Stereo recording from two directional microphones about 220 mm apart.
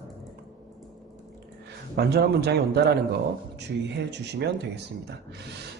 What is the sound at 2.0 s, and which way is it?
A man's voice, 45° right (ahead or behind).